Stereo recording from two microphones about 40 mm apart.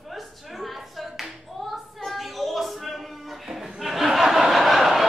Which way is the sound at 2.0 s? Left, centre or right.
Centre.